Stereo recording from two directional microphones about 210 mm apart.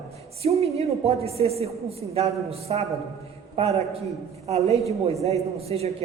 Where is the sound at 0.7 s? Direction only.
30° right (ahead or behind).